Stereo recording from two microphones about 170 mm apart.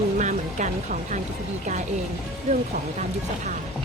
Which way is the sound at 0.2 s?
45° right (ahead or behind).